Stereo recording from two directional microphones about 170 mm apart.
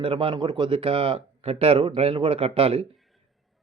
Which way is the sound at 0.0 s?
30° right (ahead or behind).